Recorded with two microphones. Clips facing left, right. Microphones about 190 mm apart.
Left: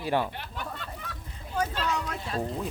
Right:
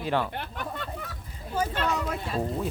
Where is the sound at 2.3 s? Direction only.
Centre (ahead or behind).